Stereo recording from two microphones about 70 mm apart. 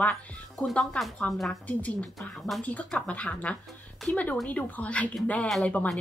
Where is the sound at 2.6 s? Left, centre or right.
Left.